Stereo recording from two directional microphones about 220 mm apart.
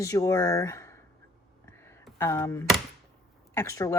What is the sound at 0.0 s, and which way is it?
Speech, 15° left (ahead or behind).